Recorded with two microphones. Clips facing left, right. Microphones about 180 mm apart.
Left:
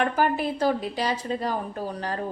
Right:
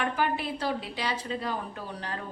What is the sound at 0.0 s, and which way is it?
A woman's voice, 45° left (ahead or behind).